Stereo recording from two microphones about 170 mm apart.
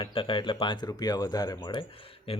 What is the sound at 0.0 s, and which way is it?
Speech, 30° left (ahead or behind).